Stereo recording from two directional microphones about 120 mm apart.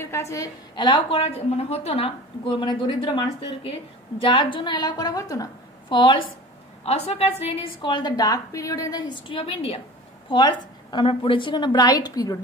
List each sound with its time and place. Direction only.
0.0 s a woman's voice: 25° left (ahead or behind)
0.7 s a woman's voice: 45° left (ahead or behind)
6.9 s a woman's voice: 60° left (ahead or behind)
10.3 s a woman's voice: 40° left (ahead or behind)